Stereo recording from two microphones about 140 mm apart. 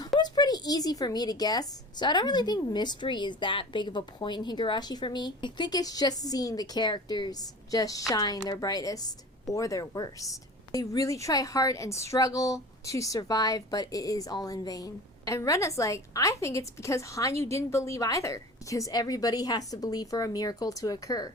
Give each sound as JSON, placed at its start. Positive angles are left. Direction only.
{"t": 0.2, "sound": "a woman's voice", "side_deg": 30}